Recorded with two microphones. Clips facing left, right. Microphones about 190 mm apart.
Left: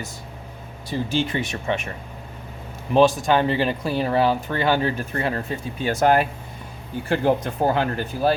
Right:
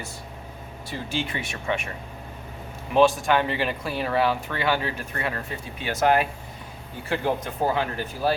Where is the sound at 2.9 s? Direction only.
35° left (ahead or behind).